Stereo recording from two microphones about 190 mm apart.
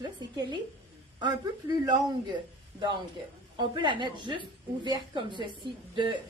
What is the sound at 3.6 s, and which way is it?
A woman's voice, 25° right (ahead or behind).